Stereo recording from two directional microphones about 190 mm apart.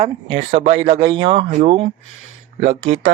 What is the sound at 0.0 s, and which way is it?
Speech, 35° right (ahead or behind).